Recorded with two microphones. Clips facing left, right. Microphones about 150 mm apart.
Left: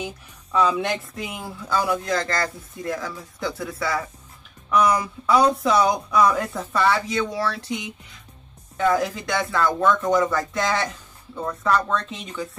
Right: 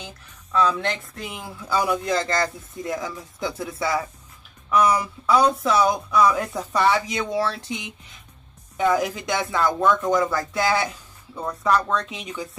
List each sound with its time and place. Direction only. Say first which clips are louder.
0.0 s speech: left 8 dB; 10° left (ahead or behind)
1.7 s speech: right 1 dB; 15° right (ahead or behind)
4.6 s speech: even; 5° right (ahead or behind); by 7.7 s 20° right (ahead or behind)
8.7 s speech: even; 15° right (ahead or behind)